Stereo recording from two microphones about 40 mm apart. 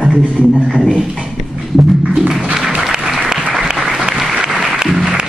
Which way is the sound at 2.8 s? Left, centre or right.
Centre.